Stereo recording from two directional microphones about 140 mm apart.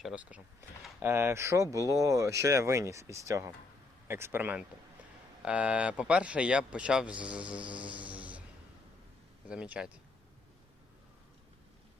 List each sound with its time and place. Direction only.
0.0 s speech: 5° right (ahead or behind)
9.5 s speech: 10° right (ahead or behind)